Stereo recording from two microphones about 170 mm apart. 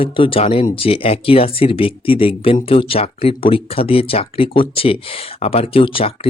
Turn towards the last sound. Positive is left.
turn(degrees=35)  # may be behind; listen again after turning